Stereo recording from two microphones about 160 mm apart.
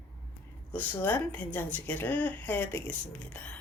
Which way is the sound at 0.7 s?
10° left (ahead or behind).